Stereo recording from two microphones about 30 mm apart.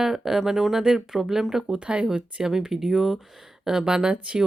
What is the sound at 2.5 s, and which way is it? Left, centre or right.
Speech, centre.